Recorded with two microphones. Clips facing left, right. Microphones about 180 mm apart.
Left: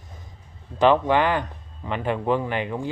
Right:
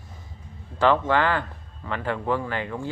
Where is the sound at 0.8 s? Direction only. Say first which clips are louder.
Left 2 dB; 15° left (ahead or behind).